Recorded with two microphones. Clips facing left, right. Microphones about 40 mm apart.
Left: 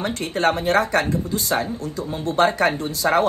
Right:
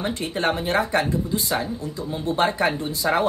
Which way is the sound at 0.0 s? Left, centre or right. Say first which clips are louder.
Left 3 dB; left.